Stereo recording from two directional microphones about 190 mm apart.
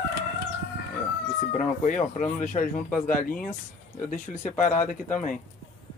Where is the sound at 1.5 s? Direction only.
40° left (ahead or behind).